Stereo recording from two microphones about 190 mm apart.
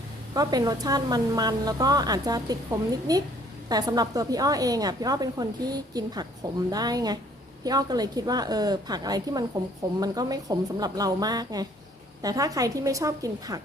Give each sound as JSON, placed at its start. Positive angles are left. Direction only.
{"t": 0.3, "sound": "a woman's voice", "side_deg": -20}